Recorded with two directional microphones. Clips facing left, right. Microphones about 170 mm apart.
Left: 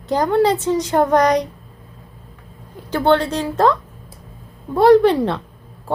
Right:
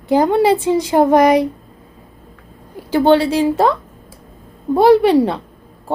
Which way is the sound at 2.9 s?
10° right (ahead or behind).